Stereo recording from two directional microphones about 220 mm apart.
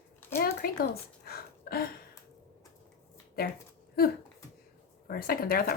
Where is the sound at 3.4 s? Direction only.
45° left (ahead or behind).